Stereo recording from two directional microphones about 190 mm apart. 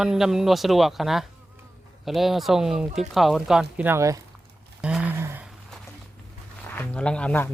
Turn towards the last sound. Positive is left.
turn(degrees=10)  # may be behind; listen again after turning